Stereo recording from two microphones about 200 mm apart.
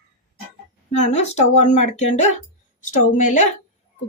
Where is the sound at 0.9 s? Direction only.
35° left (ahead or behind).